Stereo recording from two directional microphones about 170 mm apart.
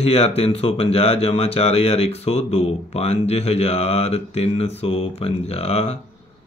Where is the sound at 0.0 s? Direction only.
35° left (ahead or behind).